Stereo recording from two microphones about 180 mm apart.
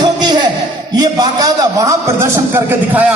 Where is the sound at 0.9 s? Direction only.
20° right (ahead or behind).